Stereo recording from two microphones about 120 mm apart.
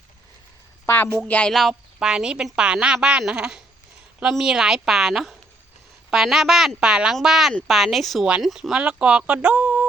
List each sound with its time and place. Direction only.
0.9 s speech: 20° left (ahead or behind)
1.3 s a woman's voice: 10° left (ahead or behind); by 9.8 s 10° right (ahead or behind)